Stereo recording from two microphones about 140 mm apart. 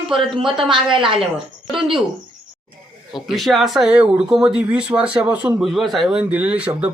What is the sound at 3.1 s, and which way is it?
Speech, centre (ahead or behind).